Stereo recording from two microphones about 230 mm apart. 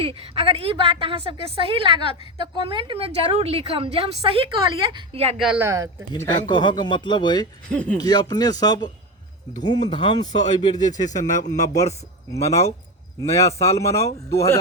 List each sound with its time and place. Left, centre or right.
0.0 s a woman's voice: right
5.4 s a woman's voice: centre
6.1 s speech: centre
7.7 s speech: centre
7.9 s speech: centre
10.3 s speech: left
13.1 s speech: centre